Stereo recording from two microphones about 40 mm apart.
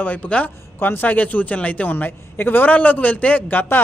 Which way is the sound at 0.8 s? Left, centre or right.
Left.